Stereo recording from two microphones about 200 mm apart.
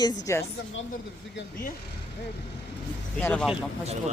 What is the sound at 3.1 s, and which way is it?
Speech, 5° left (ahead or behind).